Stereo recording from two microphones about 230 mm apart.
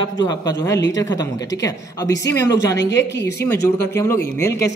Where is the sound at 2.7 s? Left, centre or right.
Left.